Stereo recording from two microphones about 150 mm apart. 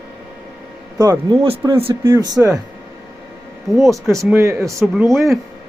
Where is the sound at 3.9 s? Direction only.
20° right (ahead or behind).